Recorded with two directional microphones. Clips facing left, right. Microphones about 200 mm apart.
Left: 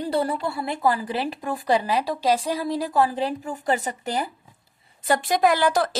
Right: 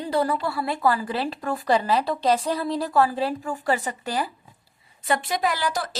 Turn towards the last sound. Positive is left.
turn(degrees=55)  # may be behind; listen again after turning